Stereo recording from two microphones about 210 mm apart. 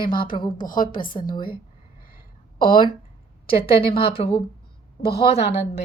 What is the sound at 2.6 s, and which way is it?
Speech, 25° left (ahead or behind).